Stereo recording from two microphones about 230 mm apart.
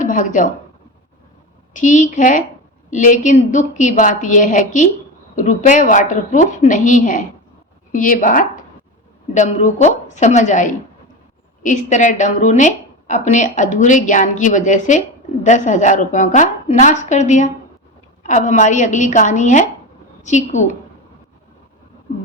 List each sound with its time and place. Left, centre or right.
0.0 s a woman's voice: left
1.7 s a woman's voice: left